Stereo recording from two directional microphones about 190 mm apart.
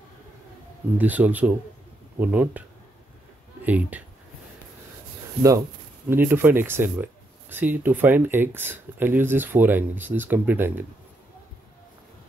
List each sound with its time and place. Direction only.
0.9 s speech: 10° right (ahead or behind)
3.6 s speech: 10° right (ahead or behind)
6.0 s speech: 10° right (ahead or behind)